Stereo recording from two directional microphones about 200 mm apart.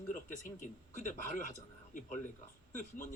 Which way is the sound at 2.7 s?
40° left (ahead or behind).